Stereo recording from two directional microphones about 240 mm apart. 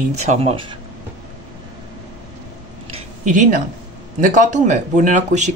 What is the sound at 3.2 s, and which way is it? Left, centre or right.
Speech, right.